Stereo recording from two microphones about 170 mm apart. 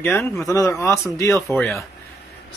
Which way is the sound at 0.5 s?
20° left (ahead or behind).